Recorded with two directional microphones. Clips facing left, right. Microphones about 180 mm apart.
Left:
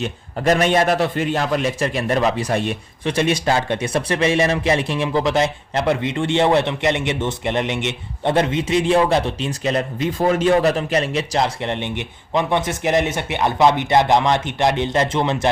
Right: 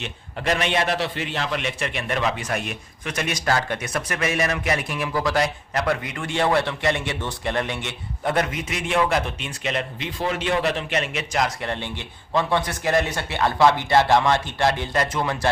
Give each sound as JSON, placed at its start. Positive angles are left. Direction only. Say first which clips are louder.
{"t": 0.0, "sound": "a man's voice", "louder": "left 8 dB", "side_deg": 40}